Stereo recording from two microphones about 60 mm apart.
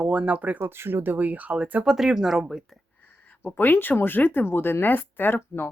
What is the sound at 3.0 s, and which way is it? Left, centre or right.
A woman's voice, left.